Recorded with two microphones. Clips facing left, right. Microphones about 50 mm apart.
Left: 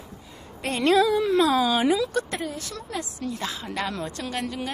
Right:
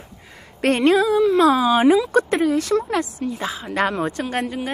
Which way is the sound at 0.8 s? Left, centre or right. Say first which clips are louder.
Right 3 dB; centre.